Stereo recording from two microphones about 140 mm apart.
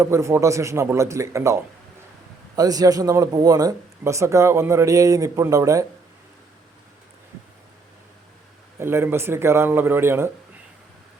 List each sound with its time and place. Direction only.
0.0 s speech: 20° right (ahead or behind)
8.8 s speech: 15° right (ahead or behind)